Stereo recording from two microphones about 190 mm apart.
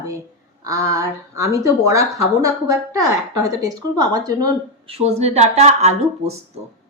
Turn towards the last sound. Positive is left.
turn(degrees=-35)  # may be behind; listen again after turning